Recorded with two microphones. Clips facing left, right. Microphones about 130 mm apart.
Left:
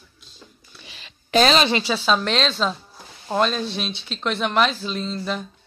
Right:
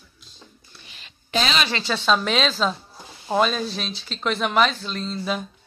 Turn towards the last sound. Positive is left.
turn(degrees=-5)  # may be behind; listen again after turning